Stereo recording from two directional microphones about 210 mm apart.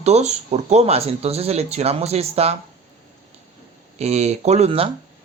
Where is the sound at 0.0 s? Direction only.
30° right (ahead or behind).